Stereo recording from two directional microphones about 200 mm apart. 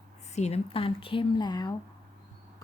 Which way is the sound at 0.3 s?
35° left (ahead or behind).